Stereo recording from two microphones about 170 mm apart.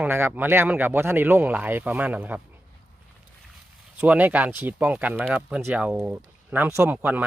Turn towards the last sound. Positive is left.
turn(degrees=-10)  # may be behind; listen again after turning